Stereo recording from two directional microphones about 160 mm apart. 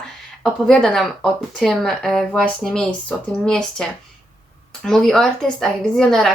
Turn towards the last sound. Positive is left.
turn(degrees=0)  # may be behind; listen again after turning